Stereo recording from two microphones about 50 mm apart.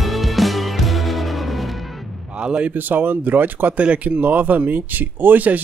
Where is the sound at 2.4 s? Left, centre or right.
Right.